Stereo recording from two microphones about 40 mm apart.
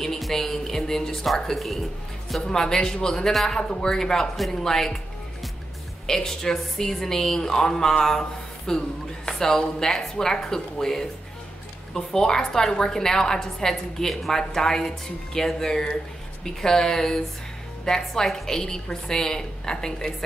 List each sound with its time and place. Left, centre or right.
0.0 s a woman's voice: centre
2.4 s a woman's voice: centre
6.0 s a woman's voice: centre